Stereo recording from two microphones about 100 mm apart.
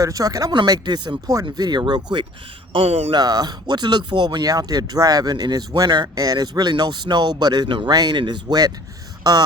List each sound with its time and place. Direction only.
0.0 s speech: 35° right (ahead or behind)
2.7 s speech: 70° right (ahead or behind)
3.1 s speech: 40° right (ahead or behind)